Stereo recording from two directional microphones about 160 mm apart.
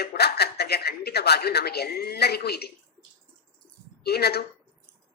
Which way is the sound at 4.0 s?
90° left.